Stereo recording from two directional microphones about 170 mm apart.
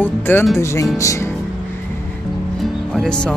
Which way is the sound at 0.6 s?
15° left (ahead or behind).